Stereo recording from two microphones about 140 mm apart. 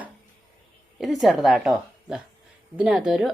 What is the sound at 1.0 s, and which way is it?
Speech, centre (ahead or behind).